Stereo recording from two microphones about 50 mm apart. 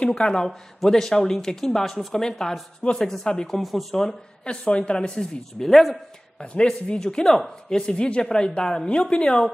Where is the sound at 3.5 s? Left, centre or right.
Centre.